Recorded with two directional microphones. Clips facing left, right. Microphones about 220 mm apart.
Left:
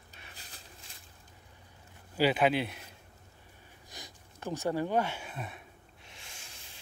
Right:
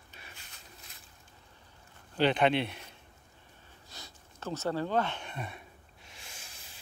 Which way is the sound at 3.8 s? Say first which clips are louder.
Left 2 dB; 15° left (ahead or behind).